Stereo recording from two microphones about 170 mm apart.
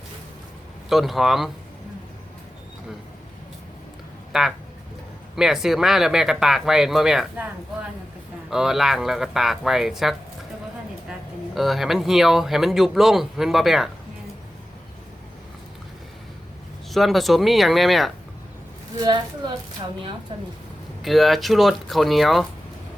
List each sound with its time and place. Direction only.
0.9 s speech: centre (ahead or behind)
4.3 s speech: centre (ahead or behind)
11.5 s speech: centre (ahead or behind)
16.9 s speech: centre (ahead or behind)
20.3 s speech: 30° right (ahead or behind)
21.0 s speech: centre (ahead or behind)